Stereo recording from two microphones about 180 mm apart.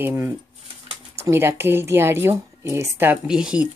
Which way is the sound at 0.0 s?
10° right (ahead or behind).